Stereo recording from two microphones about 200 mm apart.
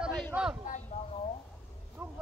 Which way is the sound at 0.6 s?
40° left (ahead or behind).